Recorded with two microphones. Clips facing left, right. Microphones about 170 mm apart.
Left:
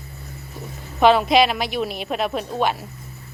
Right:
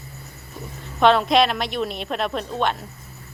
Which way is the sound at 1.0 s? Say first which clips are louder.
Left 1 dB; 5° left (ahead or behind).